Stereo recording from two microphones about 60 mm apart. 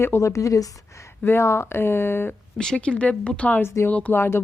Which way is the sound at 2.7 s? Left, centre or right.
Left.